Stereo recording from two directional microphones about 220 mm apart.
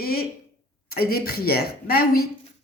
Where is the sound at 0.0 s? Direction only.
45° left (ahead or behind).